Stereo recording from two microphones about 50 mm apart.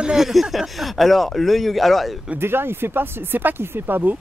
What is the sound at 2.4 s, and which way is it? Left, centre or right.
Speech, right.